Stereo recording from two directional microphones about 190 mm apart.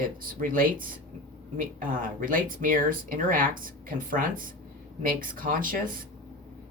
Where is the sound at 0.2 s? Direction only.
45° right (ahead or behind).